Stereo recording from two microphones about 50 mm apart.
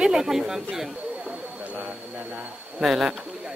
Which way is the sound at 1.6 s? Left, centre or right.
Right.